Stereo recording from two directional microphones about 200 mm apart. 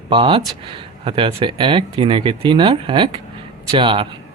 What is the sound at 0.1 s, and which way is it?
Speech, 25° right (ahead or behind).